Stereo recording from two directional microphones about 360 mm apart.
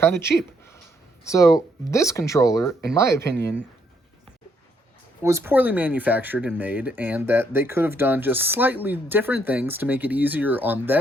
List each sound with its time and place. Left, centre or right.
0.0 s a sound: centre
1.2 s speech: centre
5.2 s speech: centre